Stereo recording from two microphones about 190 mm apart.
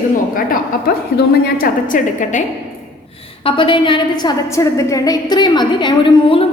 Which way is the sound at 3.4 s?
25° left (ahead or behind).